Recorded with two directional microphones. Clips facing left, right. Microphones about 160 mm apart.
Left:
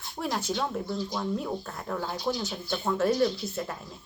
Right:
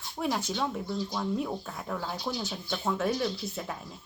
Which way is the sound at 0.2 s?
Centre (ahead or behind).